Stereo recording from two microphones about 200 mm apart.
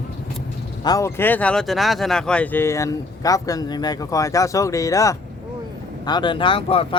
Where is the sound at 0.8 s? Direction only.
15° left (ahead or behind).